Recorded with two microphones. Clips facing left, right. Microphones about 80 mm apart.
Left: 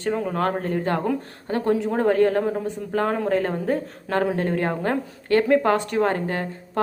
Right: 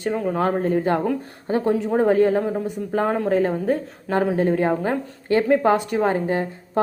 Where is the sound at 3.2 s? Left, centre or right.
Centre.